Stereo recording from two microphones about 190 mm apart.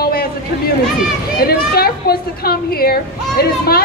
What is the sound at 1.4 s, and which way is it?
A woman's voice, 55° left (ahead or behind).